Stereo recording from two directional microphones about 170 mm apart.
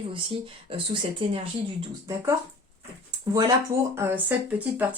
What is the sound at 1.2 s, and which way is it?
Speech, 30° right (ahead or behind).